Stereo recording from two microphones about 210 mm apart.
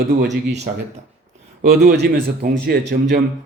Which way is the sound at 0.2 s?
35° right (ahead or behind).